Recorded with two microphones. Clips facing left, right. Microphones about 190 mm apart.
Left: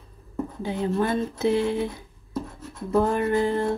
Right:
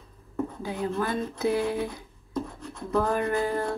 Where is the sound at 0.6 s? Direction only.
25° left (ahead or behind).